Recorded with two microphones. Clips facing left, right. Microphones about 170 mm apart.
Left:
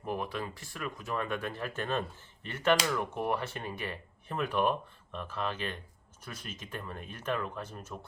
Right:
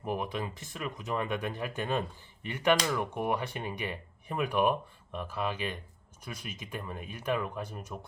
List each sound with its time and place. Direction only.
0.0 s speech: 15° right (ahead or behind)